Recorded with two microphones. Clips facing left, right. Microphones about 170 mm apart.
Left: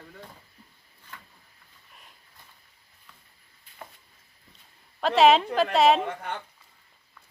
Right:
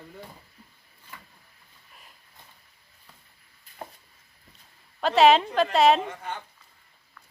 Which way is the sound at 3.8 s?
35° right (ahead or behind).